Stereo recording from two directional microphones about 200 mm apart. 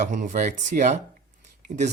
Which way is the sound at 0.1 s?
40° right (ahead or behind).